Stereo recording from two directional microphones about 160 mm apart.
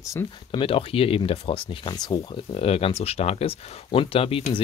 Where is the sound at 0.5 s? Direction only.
35° left (ahead or behind).